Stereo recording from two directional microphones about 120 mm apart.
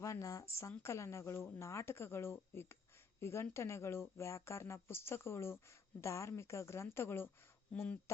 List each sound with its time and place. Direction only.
0.0 s speech: 25° left (ahead or behind)